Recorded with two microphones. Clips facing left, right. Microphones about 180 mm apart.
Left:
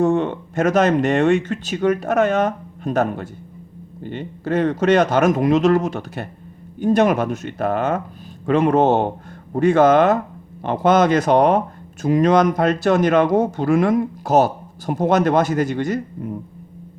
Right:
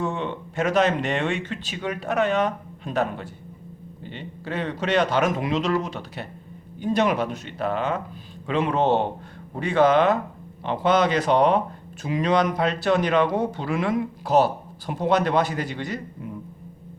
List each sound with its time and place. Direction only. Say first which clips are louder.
0.0 s speech: left 10 dB; 45° left (ahead or behind)